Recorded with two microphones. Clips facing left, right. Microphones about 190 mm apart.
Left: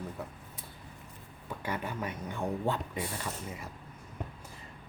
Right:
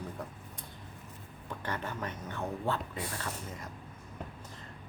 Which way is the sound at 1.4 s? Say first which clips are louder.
Left 2 dB; 10° left (ahead or behind).